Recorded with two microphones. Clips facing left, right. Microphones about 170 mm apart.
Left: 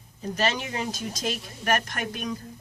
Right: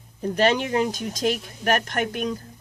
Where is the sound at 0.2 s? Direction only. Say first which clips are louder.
Right 7 dB; 55° right (ahead or behind).